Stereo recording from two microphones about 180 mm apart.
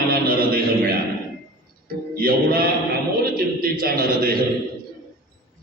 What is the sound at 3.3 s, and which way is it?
Speech, 55° right (ahead or behind).